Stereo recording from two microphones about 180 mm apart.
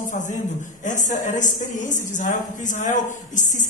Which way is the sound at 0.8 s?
45° left (ahead or behind).